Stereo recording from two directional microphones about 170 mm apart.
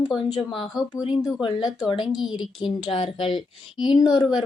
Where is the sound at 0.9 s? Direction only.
20° left (ahead or behind).